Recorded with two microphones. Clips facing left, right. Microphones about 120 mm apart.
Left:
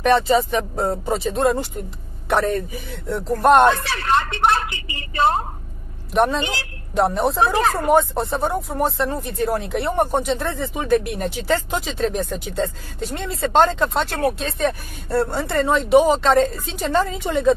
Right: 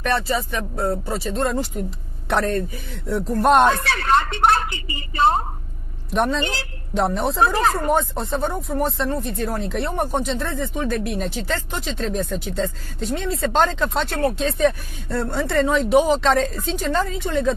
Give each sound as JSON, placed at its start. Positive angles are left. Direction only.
{"t": 0.0, "sound": "speech", "side_deg": 20}
{"t": 1.5, "sound": "speech", "side_deg": 0}